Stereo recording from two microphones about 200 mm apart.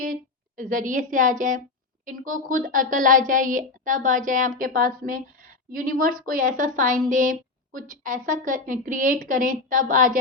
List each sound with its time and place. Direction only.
0.0 s a woman's voice: 40° right (ahead or behind)